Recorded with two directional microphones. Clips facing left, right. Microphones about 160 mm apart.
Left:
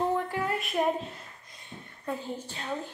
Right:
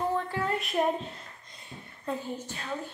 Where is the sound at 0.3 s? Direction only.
5° left (ahead or behind).